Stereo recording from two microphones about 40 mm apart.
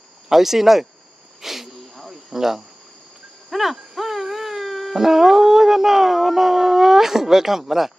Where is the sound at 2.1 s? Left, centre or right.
Centre.